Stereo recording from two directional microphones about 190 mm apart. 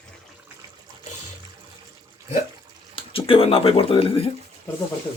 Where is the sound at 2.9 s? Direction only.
30° left (ahead or behind).